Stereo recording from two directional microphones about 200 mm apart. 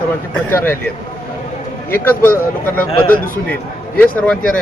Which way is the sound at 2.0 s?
10° left (ahead or behind).